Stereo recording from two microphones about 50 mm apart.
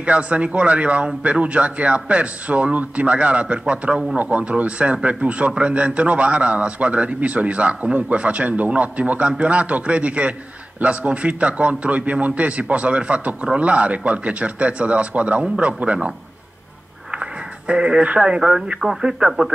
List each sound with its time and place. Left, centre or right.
0.0 s a man's voice: right
17.1 s a sound: right
18.3 s speech: centre
18.8 s speech: centre